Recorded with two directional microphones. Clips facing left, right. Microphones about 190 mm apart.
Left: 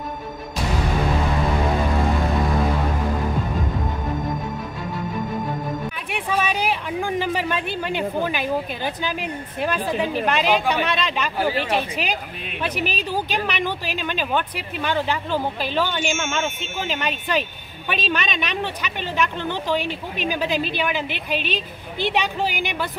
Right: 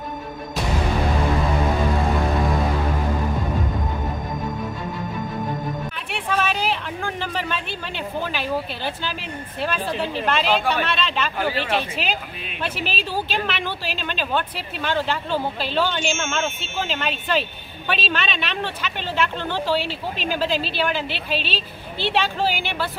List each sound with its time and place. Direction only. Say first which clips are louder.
6.1 s a woman's voice: even; 15° left (ahead or behind)